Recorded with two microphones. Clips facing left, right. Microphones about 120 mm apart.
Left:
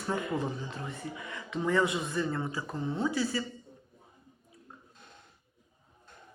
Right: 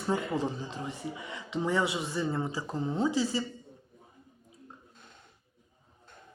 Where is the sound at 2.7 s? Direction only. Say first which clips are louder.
Right 2 dB; 35° right (ahead or behind).